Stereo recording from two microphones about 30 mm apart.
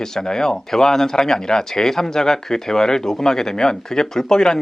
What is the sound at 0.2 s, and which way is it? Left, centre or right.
Speech, left.